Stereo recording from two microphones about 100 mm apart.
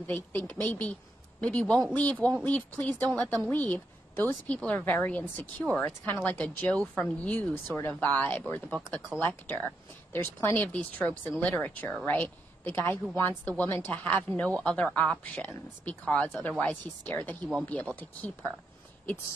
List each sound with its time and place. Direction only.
0.0 s a woman's voice: 20° left (ahead or behind)